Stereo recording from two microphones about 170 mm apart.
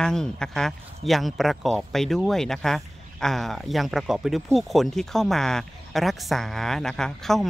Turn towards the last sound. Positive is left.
turn(degrees=0)  # may be behind; listen again after turning